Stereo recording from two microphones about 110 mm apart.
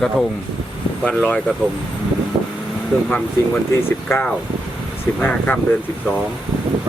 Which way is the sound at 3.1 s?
20° left (ahead or behind).